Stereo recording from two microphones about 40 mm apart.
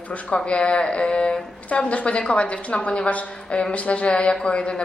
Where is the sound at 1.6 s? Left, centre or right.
Left.